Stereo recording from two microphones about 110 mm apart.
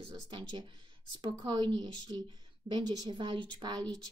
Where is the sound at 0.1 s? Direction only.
45° right (ahead or behind).